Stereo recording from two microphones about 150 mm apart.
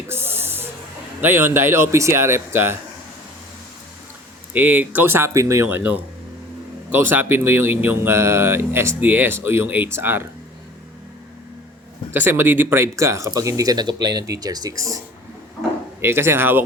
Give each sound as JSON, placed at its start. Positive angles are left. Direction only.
{"t": 0.1, "sound": "a sound", "side_deg": -15}
{"t": 1.2, "sound": "speech", "side_deg": -15}
{"t": 4.5, "sound": "speech", "side_deg": -10}
{"t": 12.1, "sound": "speech", "side_deg": -15}
{"t": 16.0, "sound": "speech", "side_deg": -15}